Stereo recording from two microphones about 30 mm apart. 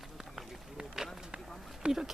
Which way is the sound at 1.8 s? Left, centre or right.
Right.